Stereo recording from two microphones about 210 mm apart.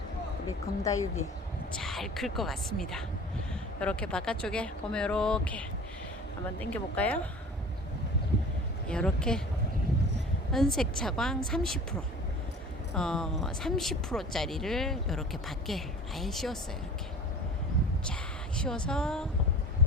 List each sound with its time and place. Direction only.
0.8 s speech: 15° left (ahead or behind)
1.8 s speech: centre (ahead or behind)
8.9 s speech: 5° left (ahead or behind)
10.5 s speech: centre (ahead or behind)
18.0 s speech: 5° left (ahead or behind)